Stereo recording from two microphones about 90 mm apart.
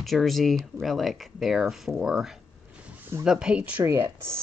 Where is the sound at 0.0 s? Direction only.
Centre (ahead or behind); by 3.8 s 15° right (ahead or behind).